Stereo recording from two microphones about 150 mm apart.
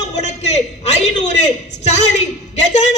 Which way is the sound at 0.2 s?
50° left (ahead or behind).